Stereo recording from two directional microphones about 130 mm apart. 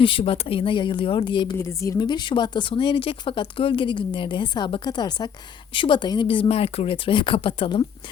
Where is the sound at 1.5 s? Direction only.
20° left (ahead or behind).